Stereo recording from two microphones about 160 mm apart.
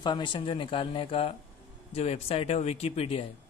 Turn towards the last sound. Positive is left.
turn(degrees=40)  # may be behind; listen again after turning